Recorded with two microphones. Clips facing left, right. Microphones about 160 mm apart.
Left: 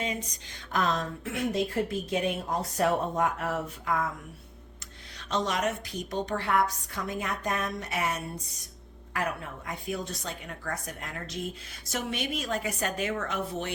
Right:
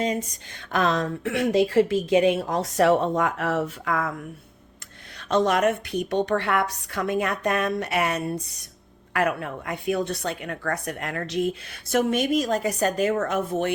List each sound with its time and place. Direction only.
0.0 s a sound: 45° right (ahead or behind)
0.7 s speech: 80° right
5.3 s a woman's voice: 55° right (ahead or behind)